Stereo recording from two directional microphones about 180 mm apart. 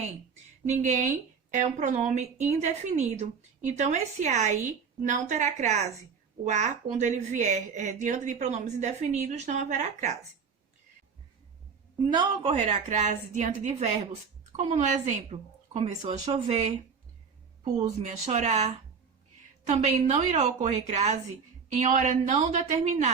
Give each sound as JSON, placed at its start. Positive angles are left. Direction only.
{"t": 0.7, "sound": "a woman's voice", "side_deg": -40}
{"t": 12.0, "sound": "a woman's voice", "side_deg": -25}
{"t": 17.8, "sound": "a woman's voice", "side_deg": -40}